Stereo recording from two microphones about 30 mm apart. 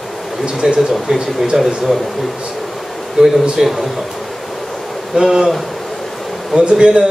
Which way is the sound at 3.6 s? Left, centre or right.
Centre.